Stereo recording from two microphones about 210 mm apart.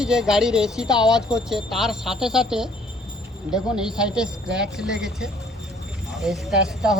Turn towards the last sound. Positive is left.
turn(degrees=0)  # may be behind; listen again after turning